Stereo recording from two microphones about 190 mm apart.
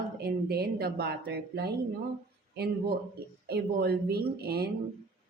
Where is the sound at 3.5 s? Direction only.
55° right (ahead or behind).